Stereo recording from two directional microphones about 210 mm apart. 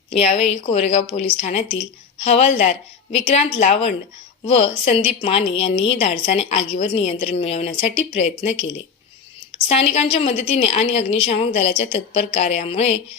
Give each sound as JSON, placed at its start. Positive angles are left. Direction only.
{"t": 0.1, "sound": "a woman's voice", "side_deg": 30}
{"t": 9.6, "sound": "a woman's voice", "side_deg": 30}